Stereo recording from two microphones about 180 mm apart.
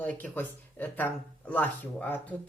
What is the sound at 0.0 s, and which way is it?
Speech, 10° left (ahead or behind).